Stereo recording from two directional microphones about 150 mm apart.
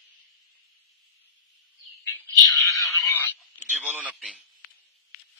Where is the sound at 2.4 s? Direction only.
20° left (ahead or behind).